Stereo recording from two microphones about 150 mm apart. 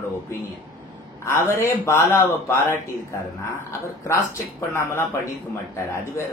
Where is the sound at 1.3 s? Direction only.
15° left (ahead or behind).